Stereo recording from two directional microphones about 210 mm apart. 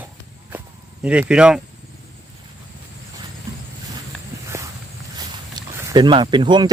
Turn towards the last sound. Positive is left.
turn(degrees=-20)  # may be behind; listen again after turning